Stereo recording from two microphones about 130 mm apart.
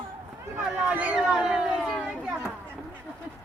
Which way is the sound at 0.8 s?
15° right (ahead or behind).